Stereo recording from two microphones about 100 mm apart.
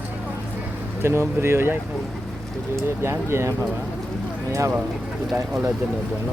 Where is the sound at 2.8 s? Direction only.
25° right (ahead or behind).